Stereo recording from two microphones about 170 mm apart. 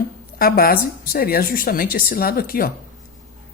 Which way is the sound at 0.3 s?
60° left (ahead or behind).